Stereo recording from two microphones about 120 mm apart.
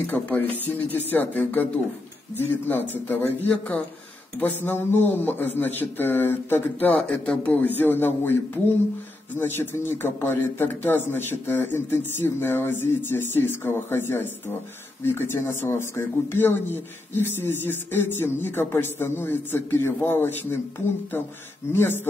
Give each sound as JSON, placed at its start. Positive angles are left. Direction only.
{"t": 0.0, "sound": "speech", "side_deg": 15}
{"t": 9.4, "sound": "speech", "side_deg": 20}
{"t": 21.7, "sound": "speech", "side_deg": 15}